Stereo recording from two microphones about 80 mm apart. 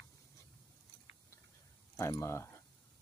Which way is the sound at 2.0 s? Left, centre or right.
Left.